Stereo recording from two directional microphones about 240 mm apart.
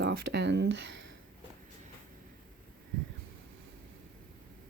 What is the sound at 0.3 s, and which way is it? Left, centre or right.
Speech, right.